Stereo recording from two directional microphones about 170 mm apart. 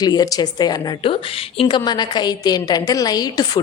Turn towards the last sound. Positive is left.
turn(degrees=25)  # may be behind; listen again after turning